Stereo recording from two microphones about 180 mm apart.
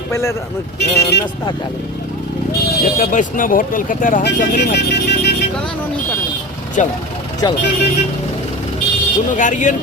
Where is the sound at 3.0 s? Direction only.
45° left (ahead or behind).